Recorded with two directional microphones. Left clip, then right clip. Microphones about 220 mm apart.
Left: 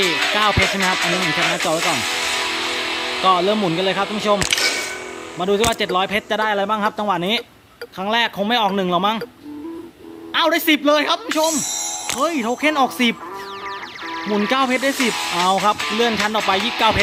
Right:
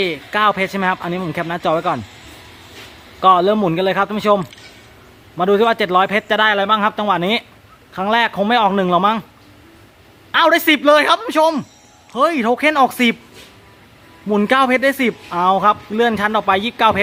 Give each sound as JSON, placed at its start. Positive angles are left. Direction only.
{"t": 0.3, "sound": "speech", "side_deg": 0}
{"t": 2.0, "sound": "music", "side_deg": 55}
{"t": 3.2, "sound": "speech", "side_deg": 0}
{"t": 4.4, "sound": "music", "side_deg": 55}
{"t": 5.4, "sound": "speech", "side_deg": 0}
{"t": 10.3, "sound": "speech", "side_deg": -5}
{"t": 14.3, "sound": "speech", "side_deg": -5}